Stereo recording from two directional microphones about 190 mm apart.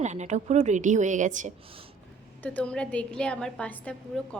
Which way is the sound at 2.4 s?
5° left (ahead or behind).